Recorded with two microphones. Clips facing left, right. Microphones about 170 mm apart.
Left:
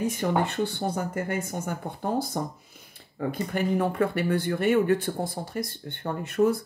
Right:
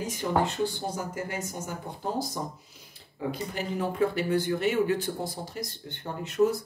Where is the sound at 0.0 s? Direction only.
60° left (ahead or behind).